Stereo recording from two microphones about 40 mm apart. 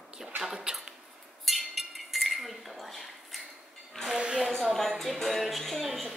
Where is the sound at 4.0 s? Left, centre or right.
Centre.